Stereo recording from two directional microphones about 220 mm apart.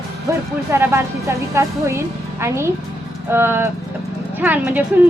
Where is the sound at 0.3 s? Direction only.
10° right (ahead or behind).